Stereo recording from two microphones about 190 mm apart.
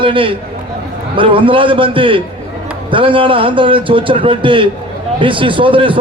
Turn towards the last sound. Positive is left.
turn(degrees=-25)  # may be behind; listen again after turning